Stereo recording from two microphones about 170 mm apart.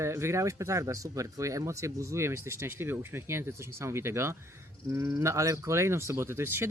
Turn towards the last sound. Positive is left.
turn(degrees=-15)  # may be behind; listen again after turning